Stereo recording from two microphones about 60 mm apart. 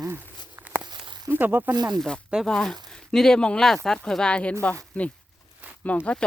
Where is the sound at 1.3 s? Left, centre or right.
Right.